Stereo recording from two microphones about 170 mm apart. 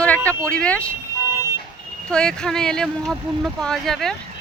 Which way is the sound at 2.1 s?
5° left (ahead or behind).